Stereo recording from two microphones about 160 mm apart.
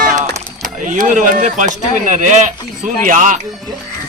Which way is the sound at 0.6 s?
55° right (ahead or behind).